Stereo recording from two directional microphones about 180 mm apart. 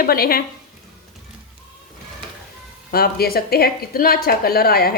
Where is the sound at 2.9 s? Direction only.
60° left (ahead or behind).